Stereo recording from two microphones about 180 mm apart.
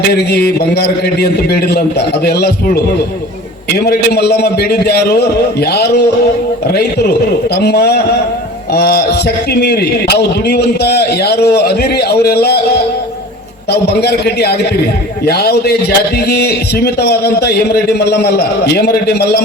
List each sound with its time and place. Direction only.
0.1 s a man's voice: 60° left (ahead or behind)
3.8 s a man's voice: 60° left (ahead or behind)
7.5 s a man's voice: 60° left (ahead or behind)
13.7 s a man's voice: 60° left (ahead or behind)